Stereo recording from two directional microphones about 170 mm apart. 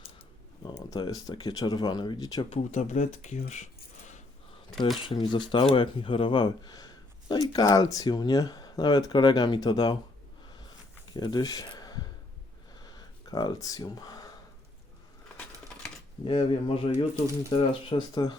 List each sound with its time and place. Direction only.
0.8 s speech: 25° left (ahead or behind)
2.5 s speech: 45° left (ahead or behind)
5.0 s speech: 30° left (ahead or behind)
11.1 s speech: 25° left (ahead or behind)
12.8 s a sound: 25° left (ahead or behind)
16.2 s speech: 30° left (ahead or behind)